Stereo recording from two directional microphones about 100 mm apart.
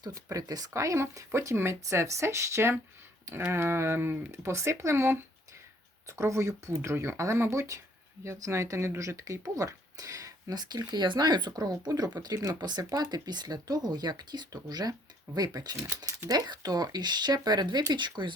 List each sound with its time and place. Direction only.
0.0 s speech: 35° right (ahead or behind)
12.5 s speech: 45° right (ahead or behind)